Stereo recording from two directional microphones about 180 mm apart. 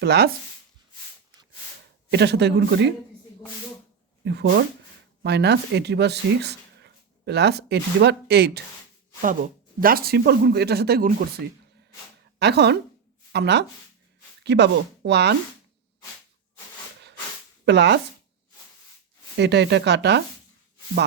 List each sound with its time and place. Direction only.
0.0 s speech: 65° right (ahead or behind)
2.0 s speech: 70° right (ahead or behind)
4.2 s speech: 75° right (ahead or behind)
9.2 s speech: 50° right (ahead or behind)
12.4 s speech: 65° right (ahead or behind)
17.7 s speech: 70° right (ahead or behind)
19.4 s speech: 70° right (ahead or behind)